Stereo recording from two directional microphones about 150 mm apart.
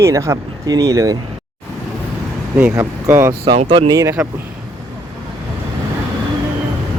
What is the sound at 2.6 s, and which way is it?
Speech, 20° right (ahead or behind).